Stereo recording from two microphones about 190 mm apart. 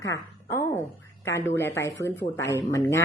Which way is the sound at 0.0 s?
15° left (ahead or behind).